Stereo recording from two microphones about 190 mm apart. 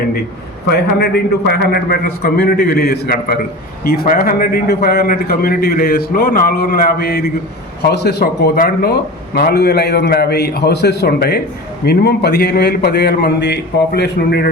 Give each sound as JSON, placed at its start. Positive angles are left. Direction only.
{"t": 0.7, "sound": "a man's voice", "side_deg": 55}